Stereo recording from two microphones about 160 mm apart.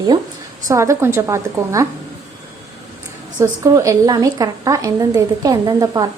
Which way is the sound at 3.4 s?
20° right (ahead or behind).